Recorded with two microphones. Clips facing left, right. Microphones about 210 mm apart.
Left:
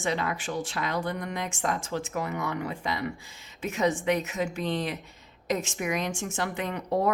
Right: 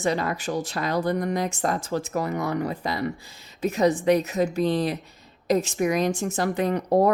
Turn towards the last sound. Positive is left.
turn(degrees=-40)  # may be behind; listen again after turning